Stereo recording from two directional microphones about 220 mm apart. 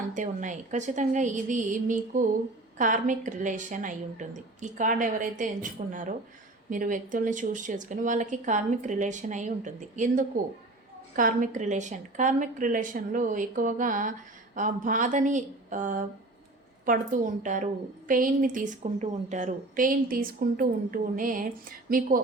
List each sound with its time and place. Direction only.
0.1 s a woman's voice: 35° right (ahead or behind)